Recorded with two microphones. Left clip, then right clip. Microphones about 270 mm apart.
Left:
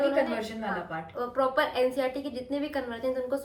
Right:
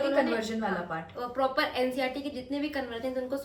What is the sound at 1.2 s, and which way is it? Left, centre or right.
A woman's voice, centre.